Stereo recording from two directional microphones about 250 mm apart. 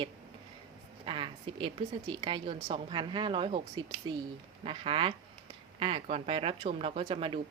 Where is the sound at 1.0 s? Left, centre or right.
Right.